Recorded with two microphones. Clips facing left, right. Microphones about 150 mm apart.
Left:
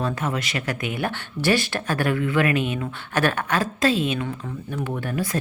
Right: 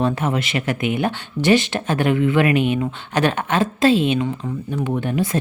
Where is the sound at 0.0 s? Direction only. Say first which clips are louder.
Right 5 dB; 25° right (ahead or behind).